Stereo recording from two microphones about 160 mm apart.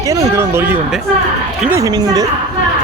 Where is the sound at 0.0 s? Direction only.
20° right (ahead or behind).